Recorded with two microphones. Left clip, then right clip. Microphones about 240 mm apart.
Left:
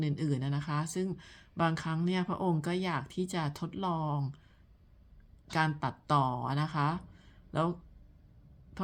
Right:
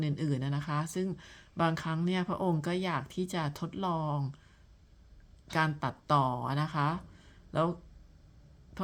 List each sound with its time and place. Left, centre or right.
0.0 s speech: centre
5.5 s speech: centre